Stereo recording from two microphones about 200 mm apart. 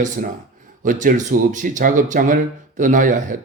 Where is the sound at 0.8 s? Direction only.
40° right (ahead or behind).